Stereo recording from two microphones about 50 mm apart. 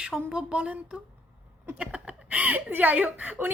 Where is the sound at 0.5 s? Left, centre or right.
Right.